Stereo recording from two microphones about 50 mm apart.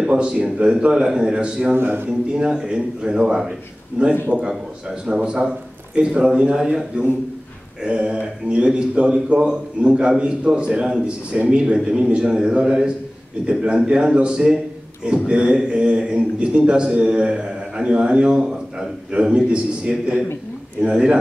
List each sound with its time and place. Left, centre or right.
0.0 s a man's voice: centre
1.8 s a man's voice: right
2.0 s a man's voice: centre